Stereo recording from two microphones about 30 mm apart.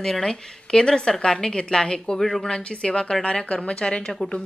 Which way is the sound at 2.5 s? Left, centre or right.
Left.